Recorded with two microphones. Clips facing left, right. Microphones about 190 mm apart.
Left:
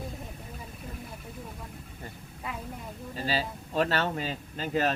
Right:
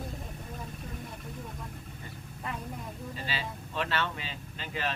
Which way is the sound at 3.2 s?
40° left (ahead or behind).